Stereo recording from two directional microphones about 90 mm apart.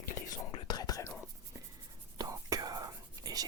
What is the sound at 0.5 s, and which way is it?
Whispering, 50° left (ahead or behind).